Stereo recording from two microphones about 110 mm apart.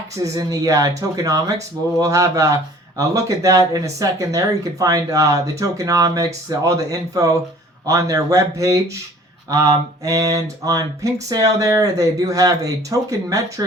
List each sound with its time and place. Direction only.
0.2 s speech: 30° right (ahead or behind)